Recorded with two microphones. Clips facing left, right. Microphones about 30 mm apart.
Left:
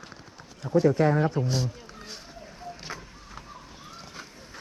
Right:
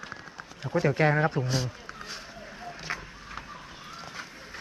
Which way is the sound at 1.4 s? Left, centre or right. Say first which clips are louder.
Left 1 dB; right.